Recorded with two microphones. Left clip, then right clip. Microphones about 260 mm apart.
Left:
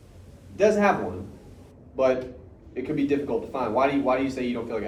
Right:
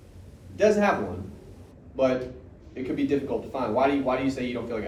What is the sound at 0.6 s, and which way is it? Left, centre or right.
Speech, left.